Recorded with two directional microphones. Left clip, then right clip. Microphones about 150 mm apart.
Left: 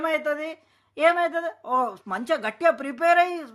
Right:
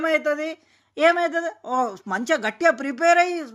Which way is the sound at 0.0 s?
15° right (ahead or behind).